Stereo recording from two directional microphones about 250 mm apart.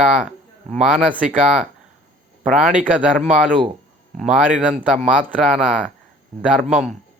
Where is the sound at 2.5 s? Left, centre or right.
Centre.